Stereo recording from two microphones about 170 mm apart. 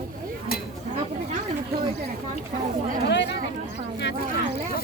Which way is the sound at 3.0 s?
90° left.